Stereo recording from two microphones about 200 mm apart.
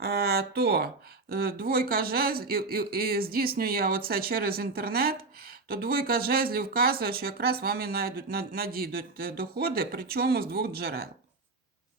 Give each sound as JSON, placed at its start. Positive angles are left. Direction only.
{"t": 0.0, "sound": "speech", "side_deg": -50}